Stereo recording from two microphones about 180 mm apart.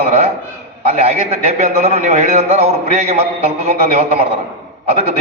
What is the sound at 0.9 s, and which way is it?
A man's voice, 35° right (ahead or behind).